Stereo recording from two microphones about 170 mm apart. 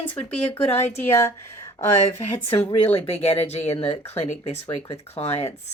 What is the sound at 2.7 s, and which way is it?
Speech, 35° left (ahead or behind).